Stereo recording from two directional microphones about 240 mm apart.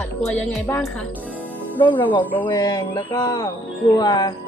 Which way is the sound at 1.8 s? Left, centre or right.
Centre.